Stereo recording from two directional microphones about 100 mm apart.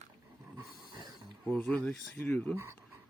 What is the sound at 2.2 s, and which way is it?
Speech, 15° left (ahead or behind).